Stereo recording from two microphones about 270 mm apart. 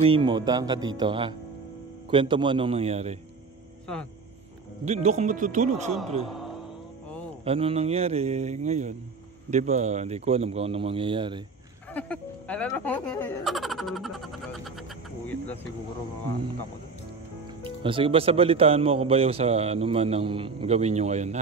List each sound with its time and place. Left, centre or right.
0.0 s a man's voice: centre
3.8 s speech: centre
4.8 s a man's voice: right
7.4 s a man's voice: right
11.9 s speech: centre
17.8 s a man's voice: centre